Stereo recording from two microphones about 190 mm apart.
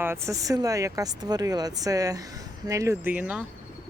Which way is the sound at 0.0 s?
15° right (ahead or behind).